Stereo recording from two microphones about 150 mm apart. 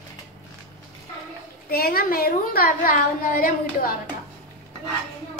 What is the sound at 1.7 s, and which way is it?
A woman's voice, 90° left.